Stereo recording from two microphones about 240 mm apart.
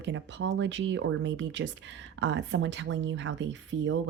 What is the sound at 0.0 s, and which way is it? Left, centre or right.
Speech, right.